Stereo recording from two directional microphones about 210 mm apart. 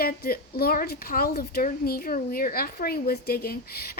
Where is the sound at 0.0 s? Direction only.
45° left (ahead or behind).